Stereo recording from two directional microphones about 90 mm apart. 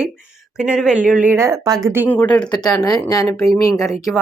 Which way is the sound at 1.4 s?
40° right (ahead or behind).